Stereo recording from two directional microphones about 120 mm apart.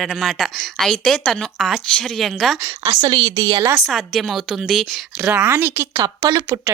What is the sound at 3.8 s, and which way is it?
A woman's voice, centre (ahead or behind).